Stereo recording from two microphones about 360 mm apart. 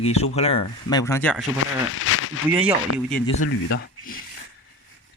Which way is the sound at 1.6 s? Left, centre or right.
Left.